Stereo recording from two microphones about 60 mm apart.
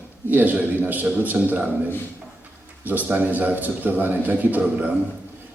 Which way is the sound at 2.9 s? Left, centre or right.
Right.